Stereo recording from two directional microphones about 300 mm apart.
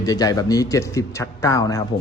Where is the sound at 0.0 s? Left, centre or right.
Centre.